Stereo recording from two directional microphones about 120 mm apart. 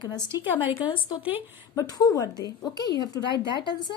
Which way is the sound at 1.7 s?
30° left (ahead or behind).